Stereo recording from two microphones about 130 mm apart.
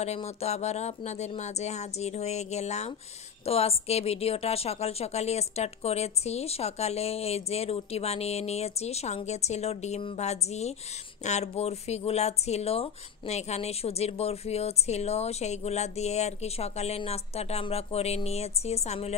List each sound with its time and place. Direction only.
0.0 s speech: 55° left (ahead or behind)